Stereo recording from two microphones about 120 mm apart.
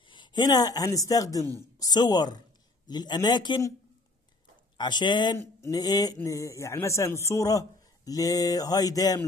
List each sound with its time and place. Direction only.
0.1 s a man's voice: 40° left (ahead or behind)
4.7 s a man's voice: 40° left (ahead or behind)